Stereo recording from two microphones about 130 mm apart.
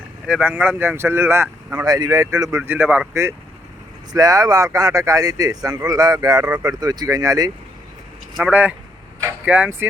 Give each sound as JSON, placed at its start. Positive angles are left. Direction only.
{"t": 0.3, "sound": "speech", "side_deg": -10}
{"t": 1.8, "sound": "speech", "side_deg": -30}
{"t": 4.1, "sound": "speech", "side_deg": -30}
{"t": 8.4, "sound": "speech", "side_deg": -10}